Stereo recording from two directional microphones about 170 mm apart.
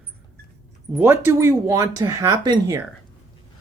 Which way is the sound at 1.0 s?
15° right (ahead or behind).